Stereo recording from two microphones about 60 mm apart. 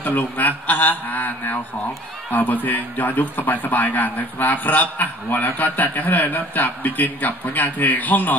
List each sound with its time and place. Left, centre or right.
0.0 s a man's voice: left